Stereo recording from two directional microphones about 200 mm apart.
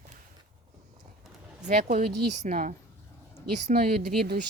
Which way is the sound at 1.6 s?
45° right (ahead or behind).